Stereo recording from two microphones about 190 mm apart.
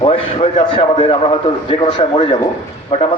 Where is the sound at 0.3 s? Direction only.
30° left (ahead or behind).